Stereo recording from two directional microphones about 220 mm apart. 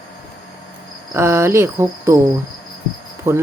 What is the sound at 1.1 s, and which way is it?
Cricket, 10° right (ahead or behind).